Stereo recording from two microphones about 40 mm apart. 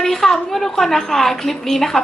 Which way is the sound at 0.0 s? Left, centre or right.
Centre.